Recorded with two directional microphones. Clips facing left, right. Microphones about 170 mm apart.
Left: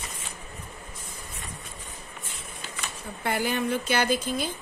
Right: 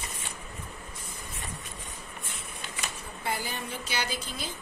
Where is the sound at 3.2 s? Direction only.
60° left (ahead or behind).